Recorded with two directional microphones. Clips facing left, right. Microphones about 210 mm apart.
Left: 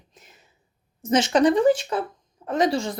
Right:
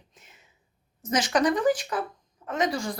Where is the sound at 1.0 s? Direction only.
25° left (ahead or behind).